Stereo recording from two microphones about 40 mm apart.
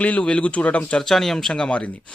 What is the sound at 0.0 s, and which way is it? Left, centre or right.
Speech, left.